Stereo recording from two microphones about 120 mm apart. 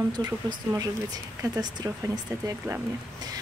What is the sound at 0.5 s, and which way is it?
Speech, 30° right (ahead or behind).